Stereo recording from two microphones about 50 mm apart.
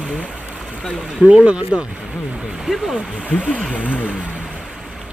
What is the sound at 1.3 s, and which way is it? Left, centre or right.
Speech, right.